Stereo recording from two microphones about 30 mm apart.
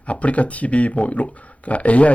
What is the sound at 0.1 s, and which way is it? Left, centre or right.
Speech, left.